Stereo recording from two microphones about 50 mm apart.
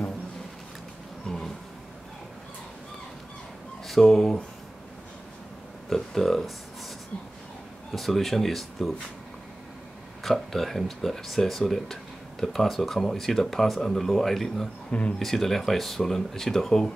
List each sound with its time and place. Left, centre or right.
1.3 s a sound: centre
3.8 s speech: centre
5.9 s speech: centre
7.9 s speech: centre
10.2 s speech: centre
14.9 s speech: left
15.1 s speech: centre